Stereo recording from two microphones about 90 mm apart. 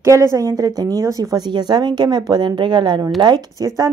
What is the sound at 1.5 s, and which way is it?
Speech, 55° right (ahead or behind).